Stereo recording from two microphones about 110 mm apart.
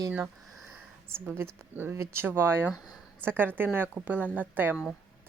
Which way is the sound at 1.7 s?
20° right (ahead or behind).